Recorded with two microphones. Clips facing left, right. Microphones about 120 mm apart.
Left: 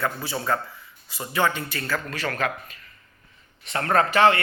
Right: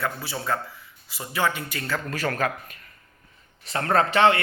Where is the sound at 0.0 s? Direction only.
Centre (ahead or behind).